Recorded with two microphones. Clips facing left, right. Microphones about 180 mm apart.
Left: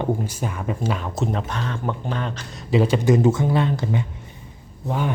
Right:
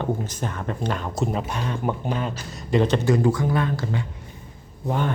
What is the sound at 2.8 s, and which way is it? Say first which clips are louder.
Speech: left 2 dB; 10° left (ahead or behind).